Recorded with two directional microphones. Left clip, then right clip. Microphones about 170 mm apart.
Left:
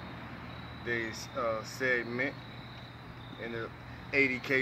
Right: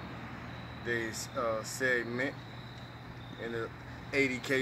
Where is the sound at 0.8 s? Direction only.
Centre (ahead or behind).